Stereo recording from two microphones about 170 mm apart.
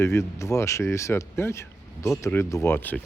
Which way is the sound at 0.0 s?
15° left (ahead or behind).